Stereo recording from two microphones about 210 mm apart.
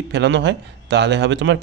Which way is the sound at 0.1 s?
55° right (ahead or behind).